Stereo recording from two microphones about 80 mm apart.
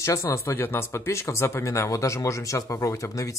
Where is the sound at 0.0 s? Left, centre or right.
Left.